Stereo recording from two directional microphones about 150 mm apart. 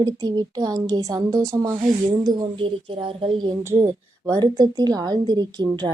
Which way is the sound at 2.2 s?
35° right (ahead or behind).